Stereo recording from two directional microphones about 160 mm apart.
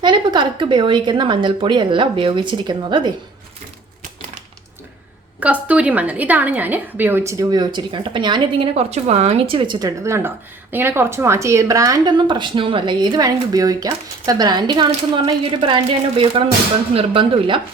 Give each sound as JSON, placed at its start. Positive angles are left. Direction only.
{"t": 0.0, "sound": "a woman's voice", "side_deg": -30}
{"t": 5.4, "sound": "a woman's voice", "side_deg": -10}